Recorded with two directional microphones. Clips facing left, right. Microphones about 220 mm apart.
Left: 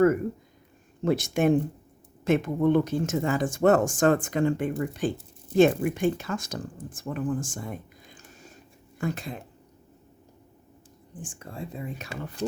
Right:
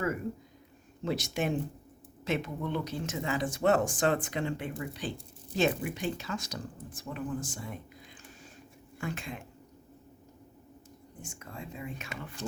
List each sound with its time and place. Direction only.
1.0 s speech: 55° left (ahead or behind); by 9.4 s 40° left (ahead or behind)
11.1 s speech: 30° left (ahead or behind)